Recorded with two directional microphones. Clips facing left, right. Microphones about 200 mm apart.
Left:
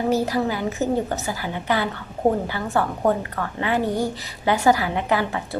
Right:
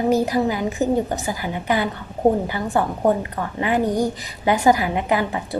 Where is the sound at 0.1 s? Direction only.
15° right (ahead or behind).